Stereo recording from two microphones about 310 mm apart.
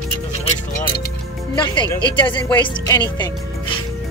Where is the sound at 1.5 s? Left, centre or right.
Centre.